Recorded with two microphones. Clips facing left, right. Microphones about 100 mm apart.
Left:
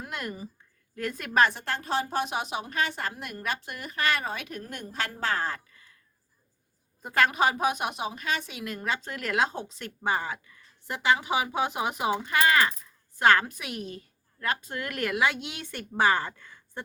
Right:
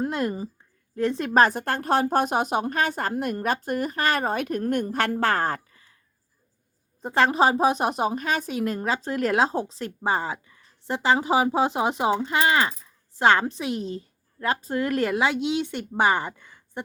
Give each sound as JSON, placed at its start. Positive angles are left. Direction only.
{"t": 0.0, "sound": "a woman's voice", "side_deg": -30}
{"t": 1.3, "sound": "a woman's voice", "side_deg": -40}
{"t": 7.0, "sound": "a woman's voice", "side_deg": -30}